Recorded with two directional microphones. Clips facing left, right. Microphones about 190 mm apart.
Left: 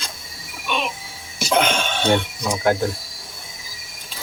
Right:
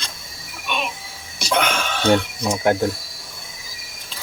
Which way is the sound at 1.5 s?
25° left (ahead or behind).